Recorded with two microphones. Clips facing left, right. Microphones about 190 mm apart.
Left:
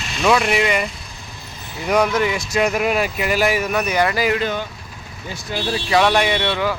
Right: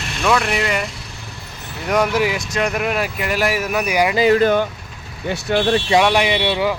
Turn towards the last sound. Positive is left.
turn(degrees=-15)  # may be behind; listen again after turning